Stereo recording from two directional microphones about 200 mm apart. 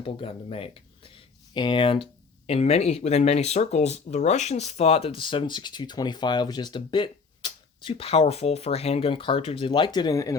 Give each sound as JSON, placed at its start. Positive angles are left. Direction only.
{"t": 0.0, "sound": "speech", "side_deg": 30}